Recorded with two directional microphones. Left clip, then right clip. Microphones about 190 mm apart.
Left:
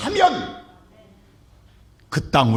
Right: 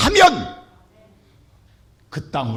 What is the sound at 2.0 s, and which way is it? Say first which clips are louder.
Speech: left 7 dB; 25° left (ahead or behind).